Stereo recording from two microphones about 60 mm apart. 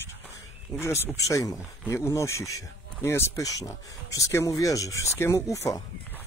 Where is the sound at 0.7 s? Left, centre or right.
Left.